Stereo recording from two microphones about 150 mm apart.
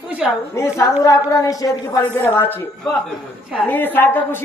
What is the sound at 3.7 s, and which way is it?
Speech, 10° left (ahead or behind).